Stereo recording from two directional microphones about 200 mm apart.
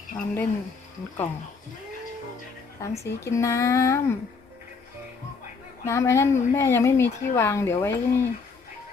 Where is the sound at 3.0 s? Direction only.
15° left (ahead or behind).